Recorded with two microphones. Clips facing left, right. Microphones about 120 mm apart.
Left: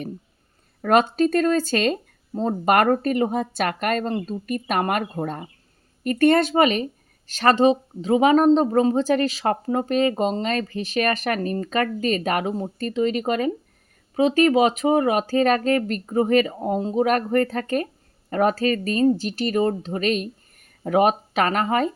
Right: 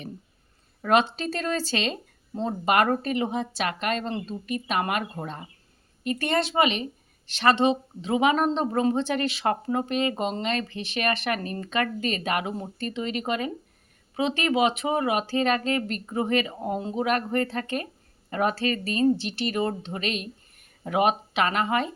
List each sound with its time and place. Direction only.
0.8 s speech: 45° left (ahead or behind)